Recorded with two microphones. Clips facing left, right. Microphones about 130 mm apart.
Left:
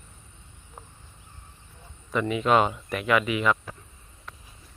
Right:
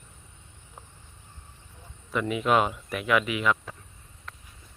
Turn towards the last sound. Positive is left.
turn(degrees=0)  # may be behind; listen again after turning